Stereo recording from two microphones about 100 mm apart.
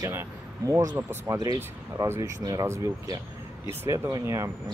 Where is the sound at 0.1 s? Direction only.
30° right (ahead or behind).